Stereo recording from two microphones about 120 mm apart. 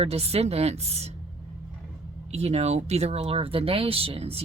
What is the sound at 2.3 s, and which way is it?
Speech, 65° right (ahead or behind).